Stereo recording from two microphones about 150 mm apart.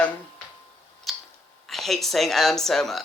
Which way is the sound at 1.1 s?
Centre (ahead or behind).